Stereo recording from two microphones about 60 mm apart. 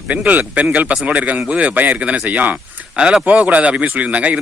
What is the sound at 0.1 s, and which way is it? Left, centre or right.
A man's voice, right.